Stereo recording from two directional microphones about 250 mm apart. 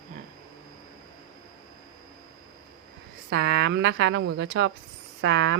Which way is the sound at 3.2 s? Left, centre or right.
Right.